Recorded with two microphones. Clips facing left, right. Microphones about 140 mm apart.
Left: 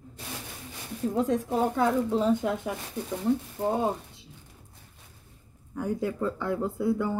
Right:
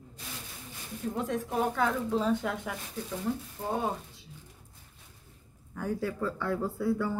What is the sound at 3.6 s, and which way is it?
Speech, 70° left (ahead or behind).